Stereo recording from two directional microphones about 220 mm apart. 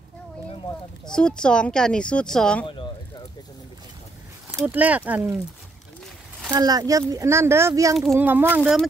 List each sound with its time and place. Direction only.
1.1 s speech: 5° left (ahead or behind)
2.6 s speech: 20° left (ahead or behind)
4.5 s speech: 10° right (ahead or behind)
6.5 s speech: 15° right (ahead or behind)
7.9 s speech: centre (ahead or behind)